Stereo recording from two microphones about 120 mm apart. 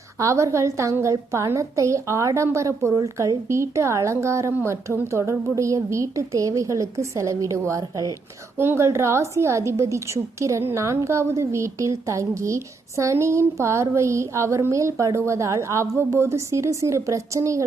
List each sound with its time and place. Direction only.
0.2 s a woman's voice: 25° right (ahead or behind)
8.5 s a woman's voice: 20° right (ahead or behind)